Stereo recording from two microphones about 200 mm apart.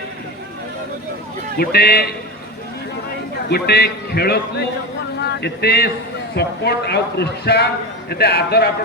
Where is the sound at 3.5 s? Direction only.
55° left (ahead or behind).